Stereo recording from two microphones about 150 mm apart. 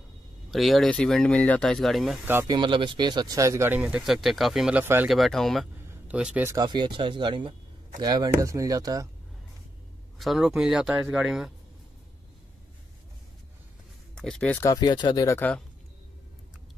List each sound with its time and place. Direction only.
0.5 s speech: centre (ahead or behind)
2.4 s speech: 30° right (ahead or behind); by 5.1 s 10° right (ahead or behind)
5.1 s speech: centre (ahead or behind)
5.9 s a sound: 10° right (ahead or behind)
6.5 s speech: 30° right (ahead or behind)
10.1 s speech: centre (ahead or behind)
14.1 s speech: 5° left (ahead or behind)
14.6 s speech: 25° left (ahead or behind)
15.3 s speech: 10° left (ahead or behind)